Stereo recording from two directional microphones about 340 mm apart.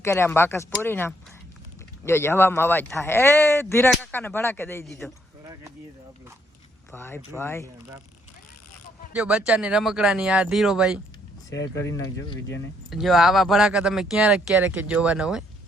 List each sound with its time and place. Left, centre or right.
0.0 s speech: centre
6.9 s speech: centre
9.1 s speech: centre
11.5 s speech: left
11.9 s speech: centre
12.9 s speech: centre